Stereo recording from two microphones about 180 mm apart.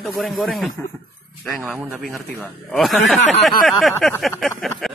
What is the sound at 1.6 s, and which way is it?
Speech, 10° right (ahead or behind).